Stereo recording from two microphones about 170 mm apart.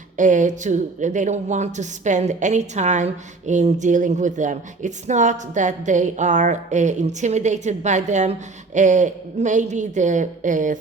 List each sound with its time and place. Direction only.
0.2 s a woman's voice: 45° right (ahead or behind)